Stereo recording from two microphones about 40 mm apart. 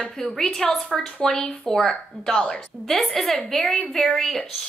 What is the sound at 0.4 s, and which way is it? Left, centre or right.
A woman's voice, centre.